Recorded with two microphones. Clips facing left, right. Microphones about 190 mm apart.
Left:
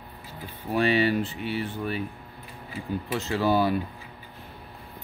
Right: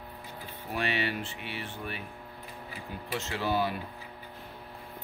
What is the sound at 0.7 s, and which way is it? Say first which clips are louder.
Speech: left 9 dB; 35° left (ahead or behind).